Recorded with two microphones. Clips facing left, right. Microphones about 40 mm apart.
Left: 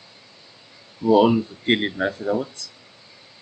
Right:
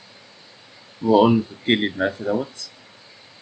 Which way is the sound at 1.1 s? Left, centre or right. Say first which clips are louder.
Right 1 dB; centre.